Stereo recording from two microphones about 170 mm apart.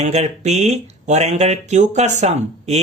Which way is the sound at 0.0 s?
40° right (ahead or behind).